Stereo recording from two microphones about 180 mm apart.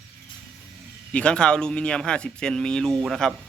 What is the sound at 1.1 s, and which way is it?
Speech, 5° left (ahead or behind).